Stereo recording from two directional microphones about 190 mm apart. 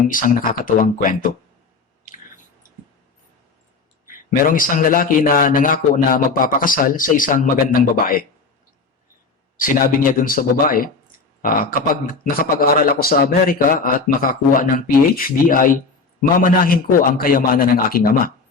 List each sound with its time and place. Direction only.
0.1 s a man's voice: 45° left (ahead or behind)
4.0 s a man's voice: 45° left (ahead or behind)
9.6 s a man's voice: 45° left (ahead or behind)